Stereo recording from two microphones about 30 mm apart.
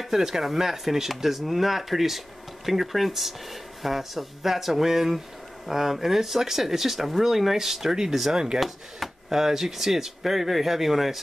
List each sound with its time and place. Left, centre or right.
0.2 s speech: centre
8.5 s speech: centre
9.3 s speech: centre